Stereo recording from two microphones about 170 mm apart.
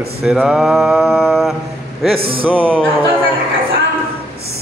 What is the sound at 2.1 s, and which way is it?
Music, 35° right (ahead or behind).